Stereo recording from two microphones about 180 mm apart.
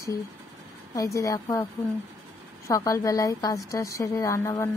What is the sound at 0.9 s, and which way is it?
Speech, 15° left (ahead or behind).